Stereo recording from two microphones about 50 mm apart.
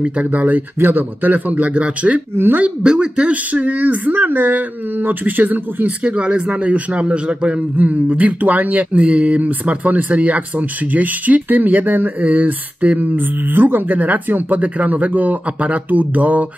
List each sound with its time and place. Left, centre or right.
0.0 s speech: right
2.3 s speech: right
2.6 s speech: centre